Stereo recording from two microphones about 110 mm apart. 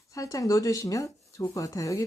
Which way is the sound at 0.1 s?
30° left (ahead or behind).